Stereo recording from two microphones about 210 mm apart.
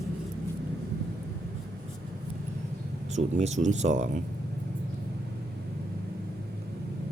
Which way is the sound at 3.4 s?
35° right (ahead or behind).